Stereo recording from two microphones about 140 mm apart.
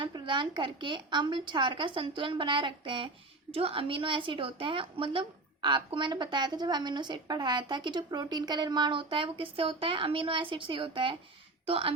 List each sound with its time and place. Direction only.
0.0 s a woman's voice: 35° right (ahead or behind)